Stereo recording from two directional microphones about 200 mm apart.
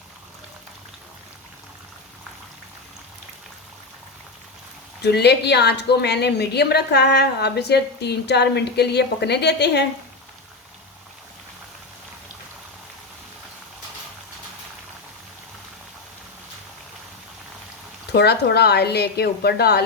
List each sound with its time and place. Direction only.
5.0 s speech: 55° left (ahead or behind)
18.1 s speech: 55° left (ahead or behind)